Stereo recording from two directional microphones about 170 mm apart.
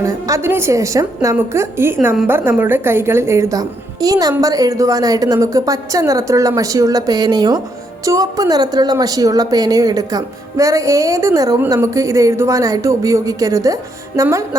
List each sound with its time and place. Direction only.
0.0 s a woman's voice: 20° right (ahead or behind)